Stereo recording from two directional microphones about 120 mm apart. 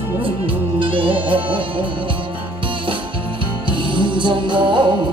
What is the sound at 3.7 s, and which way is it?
Music, 40° right (ahead or behind).